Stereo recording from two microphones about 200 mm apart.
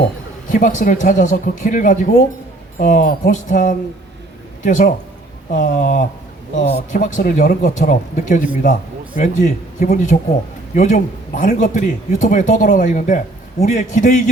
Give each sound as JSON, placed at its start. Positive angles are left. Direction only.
{"t": 0.5, "sound": "speech", "side_deg": 40}